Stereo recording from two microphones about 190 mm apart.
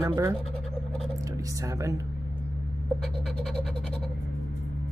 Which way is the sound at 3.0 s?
Centre (ahead or behind).